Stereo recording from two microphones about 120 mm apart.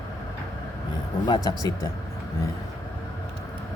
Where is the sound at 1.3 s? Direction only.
30° left (ahead or behind).